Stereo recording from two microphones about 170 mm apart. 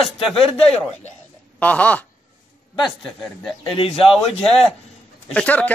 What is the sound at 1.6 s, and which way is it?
Chopping, 10° left (ahead or behind).